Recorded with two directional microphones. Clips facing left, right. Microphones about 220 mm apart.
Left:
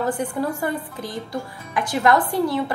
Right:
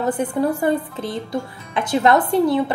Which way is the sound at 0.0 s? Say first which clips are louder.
Right 4 dB; 20° right (ahead or behind).